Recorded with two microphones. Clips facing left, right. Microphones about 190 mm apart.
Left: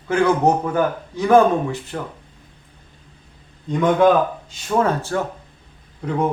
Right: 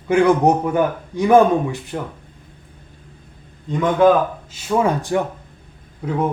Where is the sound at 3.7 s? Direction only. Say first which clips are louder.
Right 1 dB; centre (ahead or behind).